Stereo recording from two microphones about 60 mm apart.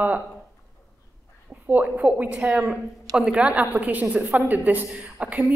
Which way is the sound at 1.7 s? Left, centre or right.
Right.